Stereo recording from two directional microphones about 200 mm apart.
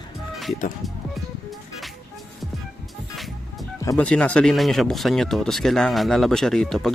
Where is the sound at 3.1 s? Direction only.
Centre (ahead or behind).